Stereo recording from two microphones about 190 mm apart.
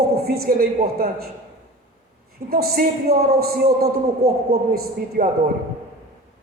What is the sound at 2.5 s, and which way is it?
A man's voice, 55° right (ahead or behind).